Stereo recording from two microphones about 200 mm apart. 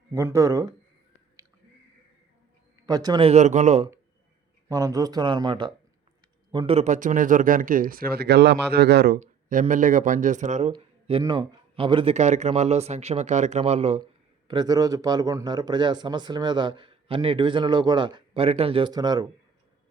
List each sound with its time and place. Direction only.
0.1 s speech: 15° right (ahead or behind)
2.8 s speech: 20° right (ahead or behind); by 3.8 s 35° right (ahead or behind)
4.7 s a man's voice: 15° right (ahead or behind); by 9.1 s 55° right (ahead or behind)
9.1 s speech: 40° right (ahead or behind)
10.7 s a man's voice: 25° right (ahead or behind)